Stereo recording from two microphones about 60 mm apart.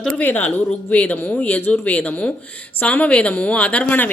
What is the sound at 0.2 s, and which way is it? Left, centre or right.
A woman's voice, left.